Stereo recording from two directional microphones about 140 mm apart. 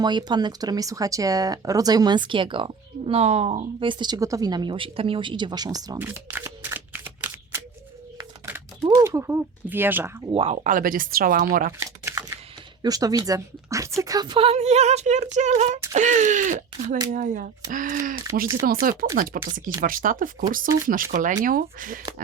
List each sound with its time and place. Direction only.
0.0 s speech: 30° right (ahead or behind); by 3.8 s 50° right (ahead or behind)
3.8 s speech: 30° right (ahead or behind)
6.0 s speech: 15° right (ahead or behind)
6.3 s a sound: 15° right (ahead or behind)
9.0 s speech: 20° right (ahead or behind)
10.3 s speech: 45° right (ahead or behind)
10.6 s speech: 70° right (ahead or behind)
11.8 s crumpling: 20° right (ahead or behind)
12.8 s speech: 25° right (ahead or behind)
14.3 s speech: 45° right (ahead or behind); by 17.0 s 65° right (ahead or behind)
17.1 s speech: 80° right
18.6 s speech: 90° right
19.8 s speech: 75° right (ahead or behind)
21.4 s speech: 80° right